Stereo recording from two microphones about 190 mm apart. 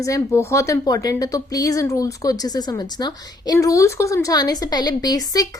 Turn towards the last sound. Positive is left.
turn(degrees=20)  # may be behind; listen again after turning